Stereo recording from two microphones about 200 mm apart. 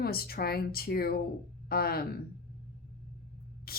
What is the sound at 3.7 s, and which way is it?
Spray, 50° left (ahead or behind).